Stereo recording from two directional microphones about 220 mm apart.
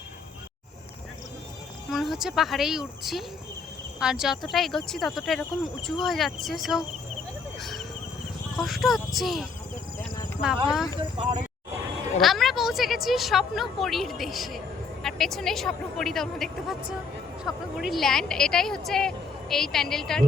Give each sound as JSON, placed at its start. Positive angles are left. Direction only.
{"t": 1.9, "sound": "a woman's voice", "side_deg": 0}
{"t": 10.9, "sound": "speech", "side_deg": -20}
{"t": 12.2, "sound": "a woman's voice", "side_deg": 0}